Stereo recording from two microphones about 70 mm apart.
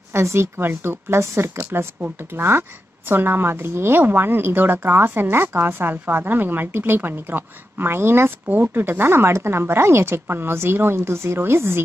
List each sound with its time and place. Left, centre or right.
0.1 s a woman's voice: right